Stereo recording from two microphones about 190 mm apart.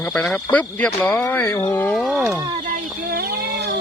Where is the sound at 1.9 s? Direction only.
Centre (ahead or behind).